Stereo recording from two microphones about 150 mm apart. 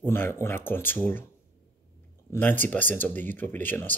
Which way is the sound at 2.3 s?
15° left (ahead or behind).